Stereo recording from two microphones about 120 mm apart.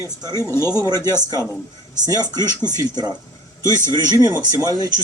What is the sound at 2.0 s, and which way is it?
Speech, 30° right (ahead or behind).